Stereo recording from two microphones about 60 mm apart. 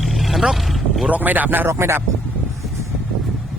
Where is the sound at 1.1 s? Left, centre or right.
Right.